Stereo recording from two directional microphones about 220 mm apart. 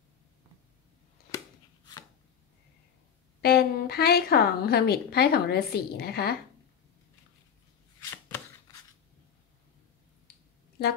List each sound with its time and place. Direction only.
3.3 s a woman's voice: 45° left (ahead or behind)
8.0 s chopping: 10° left (ahead or behind)